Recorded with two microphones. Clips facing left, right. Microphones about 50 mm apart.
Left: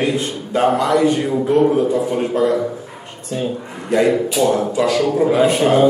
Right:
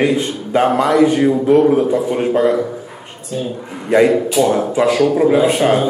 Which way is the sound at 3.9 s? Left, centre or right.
Right.